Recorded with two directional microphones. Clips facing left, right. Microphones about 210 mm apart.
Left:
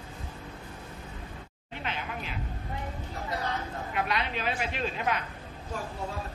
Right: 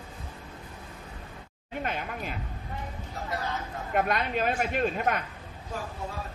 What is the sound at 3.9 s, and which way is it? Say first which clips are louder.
A woman's voice: right 5 dB; 45° right (ahead or behind).